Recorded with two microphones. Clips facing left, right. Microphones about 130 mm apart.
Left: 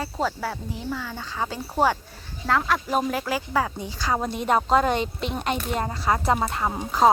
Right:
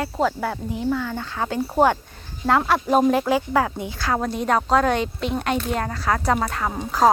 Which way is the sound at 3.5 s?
15° right (ahead or behind).